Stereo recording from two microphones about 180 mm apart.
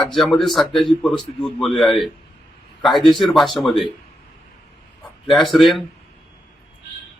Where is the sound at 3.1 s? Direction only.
25° left (ahead or behind).